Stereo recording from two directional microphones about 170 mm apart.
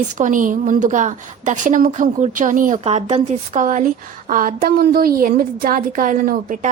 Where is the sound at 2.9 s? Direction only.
35° right (ahead or behind).